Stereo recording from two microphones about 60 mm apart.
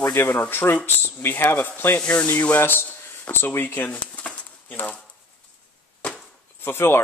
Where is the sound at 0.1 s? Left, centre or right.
Left.